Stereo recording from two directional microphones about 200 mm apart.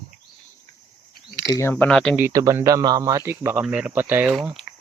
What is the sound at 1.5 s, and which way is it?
Speech, 10° left (ahead or behind).